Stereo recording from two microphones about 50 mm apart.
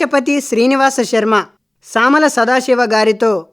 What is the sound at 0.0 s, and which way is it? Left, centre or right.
Speech, centre.